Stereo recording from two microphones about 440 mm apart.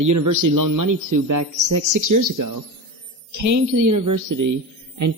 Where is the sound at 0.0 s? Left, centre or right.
Right.